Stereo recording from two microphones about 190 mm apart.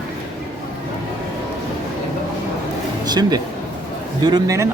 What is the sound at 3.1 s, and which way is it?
A man's voice, 20° right (ahead or behind).